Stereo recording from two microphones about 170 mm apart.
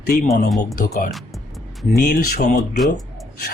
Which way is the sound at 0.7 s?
50° left (ahead or behind).